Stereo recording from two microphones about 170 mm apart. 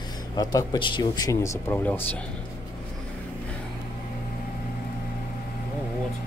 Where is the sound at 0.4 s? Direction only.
20° left (ahead or behind).